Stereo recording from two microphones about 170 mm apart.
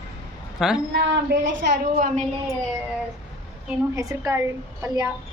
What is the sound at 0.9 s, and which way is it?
Speech, 90° right.